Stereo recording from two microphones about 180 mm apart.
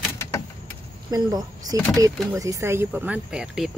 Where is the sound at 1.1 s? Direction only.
20° right (ahead or behind).